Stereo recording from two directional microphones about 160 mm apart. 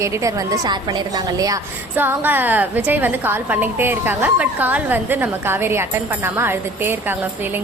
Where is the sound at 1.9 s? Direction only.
10° right (ahead or behind).